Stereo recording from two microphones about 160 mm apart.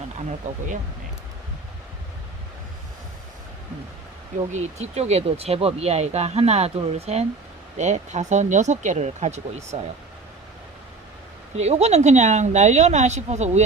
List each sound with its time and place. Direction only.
0.3 s a woman's voice: 50° right (ahead or behind)
4.5 s a woman's voice: 40° right (ahead or behind)
11.5 s a woman's voice: 45° right (ahead or behind)